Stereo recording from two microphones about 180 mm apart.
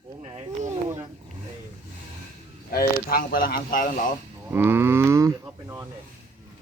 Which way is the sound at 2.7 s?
55° left (ahead or behind).